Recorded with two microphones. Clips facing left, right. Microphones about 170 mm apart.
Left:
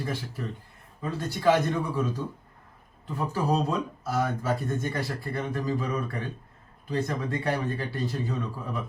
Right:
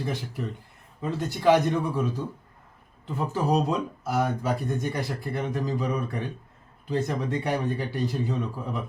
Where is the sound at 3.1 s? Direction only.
20° right (ahead or behind).